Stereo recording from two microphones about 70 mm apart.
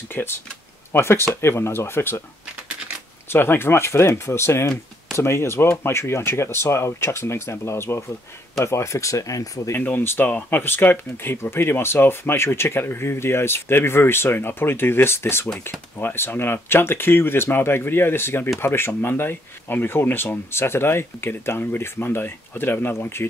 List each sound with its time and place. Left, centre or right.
0.1 s speech: left
3.3 s speech: left
9.8 s speech: left